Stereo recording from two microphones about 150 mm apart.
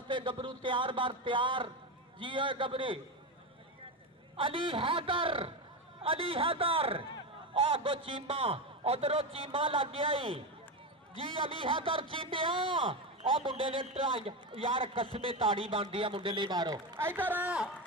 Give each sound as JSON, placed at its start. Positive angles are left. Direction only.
{"t": 0.1, "sound": "a man's voice", "side_deg": -30}
{"t": 4.4, "sound": "a man's voice", "side_deg": -35}
{"t": 17.0, "sound": "speech", "side_deg": -15}